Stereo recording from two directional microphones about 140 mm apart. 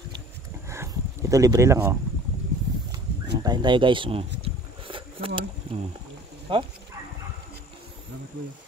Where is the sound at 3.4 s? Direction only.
30° right (ahead or behind).